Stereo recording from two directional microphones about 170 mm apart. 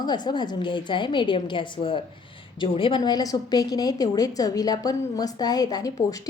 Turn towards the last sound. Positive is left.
turn(degrees=20)  # may be behind; listen again after turning